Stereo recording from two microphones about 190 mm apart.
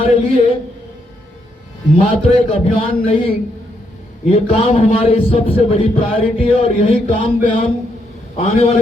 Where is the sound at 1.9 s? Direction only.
30° left (ahead or behind).